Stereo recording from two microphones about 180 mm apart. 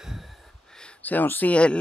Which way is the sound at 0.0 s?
Centre (ahead or behind).